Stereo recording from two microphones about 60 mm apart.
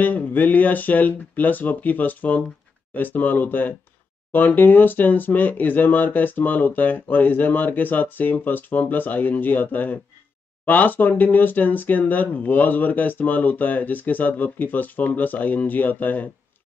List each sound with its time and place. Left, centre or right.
0.0 s speech: left